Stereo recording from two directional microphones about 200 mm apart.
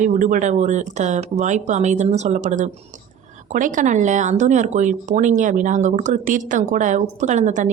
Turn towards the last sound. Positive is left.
turn(degrees=-35)  # may be behind; listen again after turning